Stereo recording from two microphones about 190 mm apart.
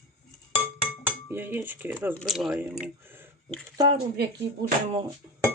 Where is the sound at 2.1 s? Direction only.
Centre (ahead or behind).